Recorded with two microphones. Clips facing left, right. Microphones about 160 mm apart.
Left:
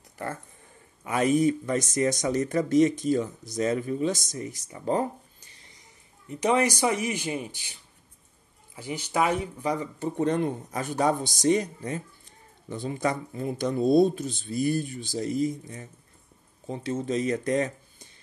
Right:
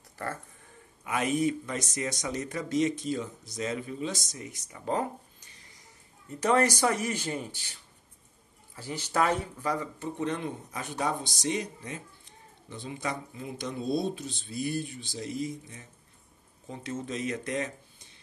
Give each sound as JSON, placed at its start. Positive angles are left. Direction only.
{"t": 1.0, "sound": "speech", "side_deg": 35}
{"t": 6.2, "sound": "a man's voice", "side_deg": 15}
{"t": 8.7, "sound": "a man's voice", "side_deg": 15}
{"t": 9.9, "sound": "speech", "side_deg": 35}